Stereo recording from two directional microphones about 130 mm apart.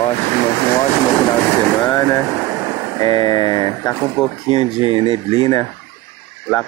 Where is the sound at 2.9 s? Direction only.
35° left (ahead or behind).